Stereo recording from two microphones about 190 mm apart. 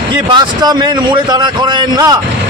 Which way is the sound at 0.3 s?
20° right (ahead or behind).